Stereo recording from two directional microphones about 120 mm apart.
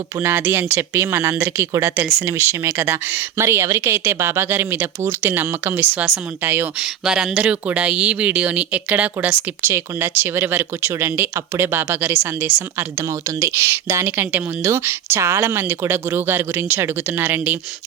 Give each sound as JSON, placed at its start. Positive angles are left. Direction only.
{"t": 0.2, "sound": "a woman's voice", "side_deg": -20}
{"t": 6.8, "sound": "speech", "side_deg": -5}